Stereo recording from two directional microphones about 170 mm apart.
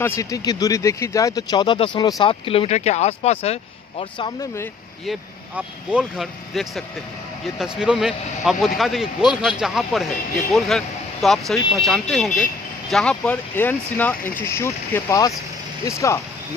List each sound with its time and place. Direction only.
0.0 s speech: 15° left (ahead or behind); by 3.5 s 35° left (ahead or behind)
4.2 s speech: 20° left (ahead or behind)
5.6 s speech: 5° right (ahead or behind); by 16.2 s 20° left (ahead or behind)